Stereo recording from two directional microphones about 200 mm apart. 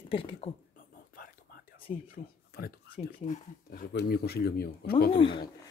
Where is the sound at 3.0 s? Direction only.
35° left (ahead or behind).